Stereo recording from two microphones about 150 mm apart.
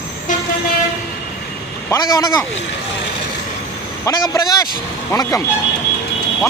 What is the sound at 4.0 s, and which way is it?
A man's voice, 25° left (ahead or behind).